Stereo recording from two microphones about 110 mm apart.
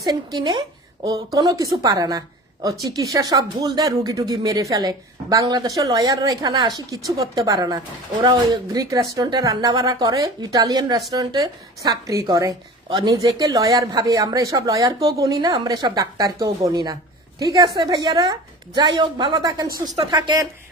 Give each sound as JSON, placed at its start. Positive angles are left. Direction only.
{"t": 0.0, "sound": "a woman's voice", "side_deg": -35}
{"t": 18.9, "sound": "a woman's voice", "side_deg": -45}